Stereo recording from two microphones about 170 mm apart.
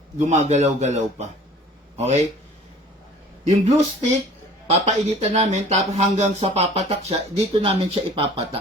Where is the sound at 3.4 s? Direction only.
45° right (ahead or behind).